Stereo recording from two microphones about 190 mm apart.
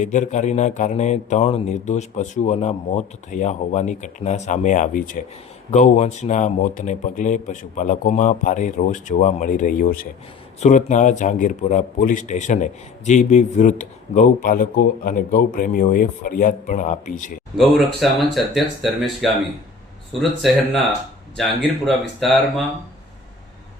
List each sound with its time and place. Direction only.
0.0 s a man's voice: 40° left (ahead or behind)
17.6 s speech: centre (ahead or behind)
21.8 s speech: centre (ahead or behind)